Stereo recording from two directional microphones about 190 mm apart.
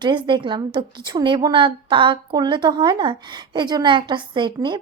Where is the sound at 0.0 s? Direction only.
25° right (ahead or behind).